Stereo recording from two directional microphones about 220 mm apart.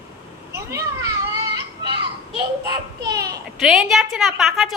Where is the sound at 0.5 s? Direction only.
15° right (ahead or behind).